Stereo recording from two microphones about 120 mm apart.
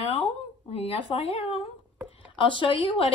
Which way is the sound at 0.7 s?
55° left (ahead or behind).